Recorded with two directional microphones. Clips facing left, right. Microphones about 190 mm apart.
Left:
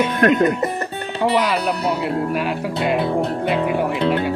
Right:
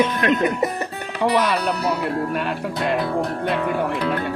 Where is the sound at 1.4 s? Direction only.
Centre (ahead or behind).